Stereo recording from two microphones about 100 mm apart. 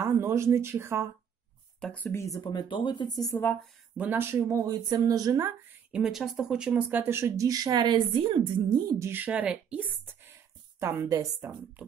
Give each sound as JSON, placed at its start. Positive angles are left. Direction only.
{"t": 0.0, "sound": "speech", "side_deg": -30}
{"t": 1.8, "sound": "speech", "side_deg": 10}
{"t": 2.1, "sound": "speech", "side_deg": 35}
{"t": 2.5, "sound": "speech", "side_deg": 55}
{"t": 3.9, "sound": "speech", "side_deg": -15}
{"t": 4.2, "sound": "speech", "side_deg": -30}
{"t": 5.9, "sound": "speech", "side_deg": -5}
{"t": 8.9, "sound": "a woman's voice", "side_deg": -25}
{"t": 10.8, "sound": "speech", "side_deg": -25}